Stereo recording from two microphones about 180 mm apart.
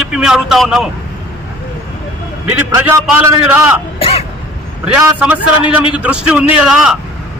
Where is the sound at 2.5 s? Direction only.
10° right (ahead or behind).